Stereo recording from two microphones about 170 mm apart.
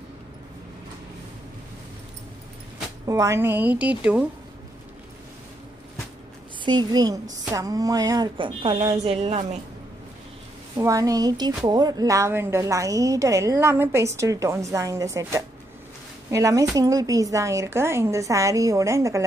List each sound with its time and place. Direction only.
3.1 s a woman's voice: 20° right (ahead or behind)
6.6 s a woman's voice: 25° right (ahead or behind)
10.8 s a woman's voice: 20° right (ahead or behind)